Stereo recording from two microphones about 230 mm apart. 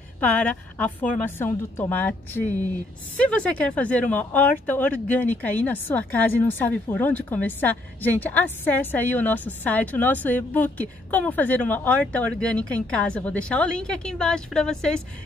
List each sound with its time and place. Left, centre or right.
0.2 s speech: centre